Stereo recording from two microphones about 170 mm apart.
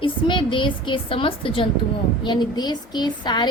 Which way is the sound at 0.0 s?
30° left (ahead or behind).